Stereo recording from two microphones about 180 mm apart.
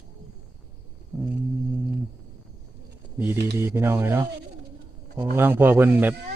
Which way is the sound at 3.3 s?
70° right (ahead or behind).